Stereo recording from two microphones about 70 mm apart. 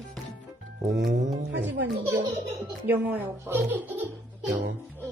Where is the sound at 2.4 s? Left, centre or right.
Right.